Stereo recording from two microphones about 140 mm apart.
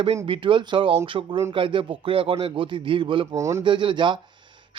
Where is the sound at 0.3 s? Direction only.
35° right (ahead or behind).